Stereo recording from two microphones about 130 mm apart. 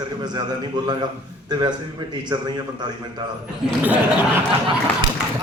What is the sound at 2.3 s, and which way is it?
Speech, 35° right (ahead or behind).